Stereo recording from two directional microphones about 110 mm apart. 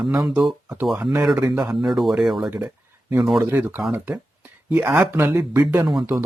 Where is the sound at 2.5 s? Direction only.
25° right (ahead or behind).